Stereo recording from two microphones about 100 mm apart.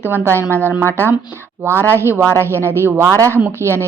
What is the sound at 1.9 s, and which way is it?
Speech, 25° right (ahead or behind).